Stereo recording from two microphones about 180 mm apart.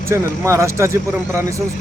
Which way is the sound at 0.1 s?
15° right (ahead or behind).